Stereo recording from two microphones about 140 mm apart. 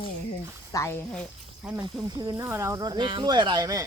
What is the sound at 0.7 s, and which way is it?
Speech, 20° left (ahead or behind).